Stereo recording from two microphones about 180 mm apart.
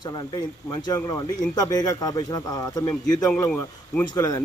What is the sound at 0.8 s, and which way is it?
Speech, 20° left (ahead or behind).